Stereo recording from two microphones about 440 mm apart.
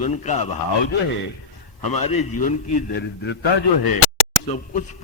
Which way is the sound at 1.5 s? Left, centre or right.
Left.